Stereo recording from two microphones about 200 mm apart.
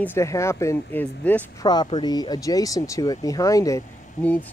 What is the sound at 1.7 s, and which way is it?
Speech, 20° left (ahead or behind).